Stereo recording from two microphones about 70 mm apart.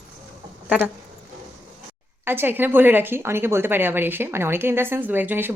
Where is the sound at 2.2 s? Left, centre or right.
Right.